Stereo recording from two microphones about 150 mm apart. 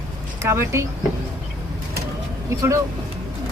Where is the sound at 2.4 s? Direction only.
20° right (ahead or behind).